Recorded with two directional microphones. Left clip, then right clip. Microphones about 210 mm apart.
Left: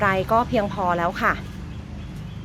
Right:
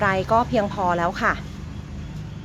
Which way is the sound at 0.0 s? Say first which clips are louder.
Even; centre (ahead or behind).